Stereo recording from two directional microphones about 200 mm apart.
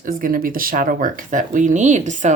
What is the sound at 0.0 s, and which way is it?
Speech, 45° right (ahead or behind).